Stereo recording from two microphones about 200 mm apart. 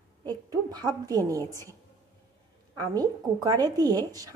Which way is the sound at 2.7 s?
20° right (ahead or behind).